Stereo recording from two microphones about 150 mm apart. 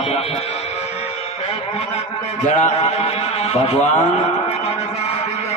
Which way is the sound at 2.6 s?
50° left (ahead or behind).